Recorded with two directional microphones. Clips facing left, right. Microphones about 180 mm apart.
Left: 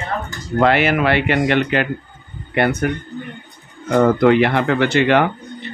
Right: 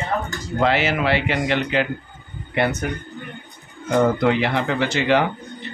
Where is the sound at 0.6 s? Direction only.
60° left (ahead or behind).